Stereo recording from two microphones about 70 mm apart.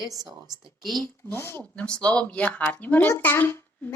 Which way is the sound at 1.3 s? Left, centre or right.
Left.